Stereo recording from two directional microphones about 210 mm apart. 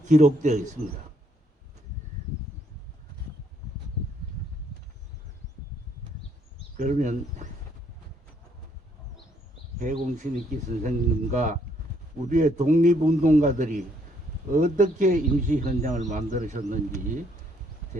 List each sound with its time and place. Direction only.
0.1 s speech: 35° right (ahead or behind)
6.7 s speech: 35° right (ahead or behind)
9.7 s speech: 40° right (ahead or behind)